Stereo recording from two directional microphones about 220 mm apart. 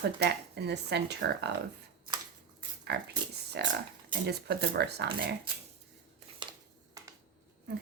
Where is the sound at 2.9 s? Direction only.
50° right (ahead or behind).